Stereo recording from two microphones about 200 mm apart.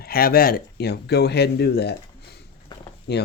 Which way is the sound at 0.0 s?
50° left (ahead or behind).